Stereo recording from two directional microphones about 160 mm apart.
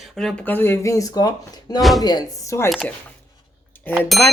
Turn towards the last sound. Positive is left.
turn(degrees=0)  # may be behind; listen again after turning